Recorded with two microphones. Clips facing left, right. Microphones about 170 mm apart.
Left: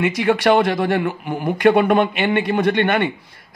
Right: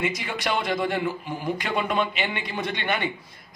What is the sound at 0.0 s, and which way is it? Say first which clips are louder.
A man's voice: left 11 dB; 65° left (ahead or behind).